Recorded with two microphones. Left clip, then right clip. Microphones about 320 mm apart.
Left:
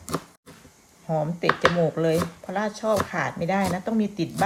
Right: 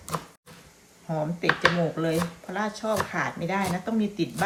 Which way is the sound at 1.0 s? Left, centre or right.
Left.